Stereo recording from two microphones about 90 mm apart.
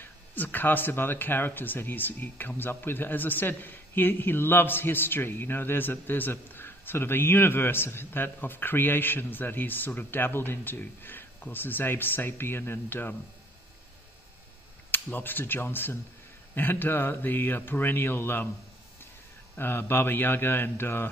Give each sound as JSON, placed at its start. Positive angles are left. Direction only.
{"t": 0.0, "sound": "speech", "side_deg": 20}
{"t": 14.9, "sound": "speech", "side_deg": 20}
{"t": 19.5, "sound": "speech", "side_deg": 25}